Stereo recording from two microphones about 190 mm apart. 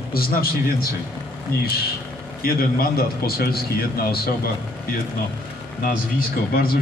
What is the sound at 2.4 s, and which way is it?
A man's voice, 50° left (ahead or behind).